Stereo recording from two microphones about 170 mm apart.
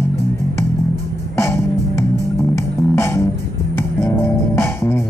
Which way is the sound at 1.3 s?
15° left (ahead or behind).